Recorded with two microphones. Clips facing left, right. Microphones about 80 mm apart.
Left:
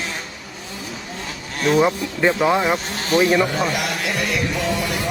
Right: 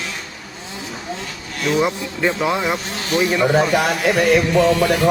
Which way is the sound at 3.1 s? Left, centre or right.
Left.